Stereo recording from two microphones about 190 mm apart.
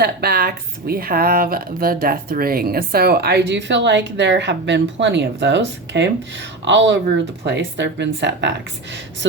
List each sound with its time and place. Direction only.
0.0 s speech: 55° right (ahead or behind)